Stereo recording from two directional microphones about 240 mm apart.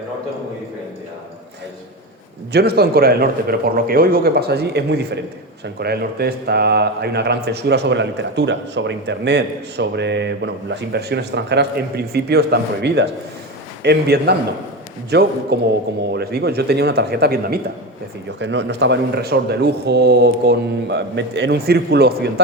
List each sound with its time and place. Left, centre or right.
2.5 s speech: right